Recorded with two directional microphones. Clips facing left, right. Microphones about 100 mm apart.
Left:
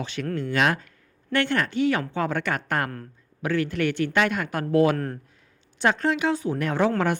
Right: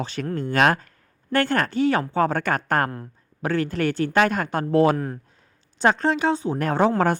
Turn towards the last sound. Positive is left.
turn(degrees=-35)  # may be behind; listen again after turning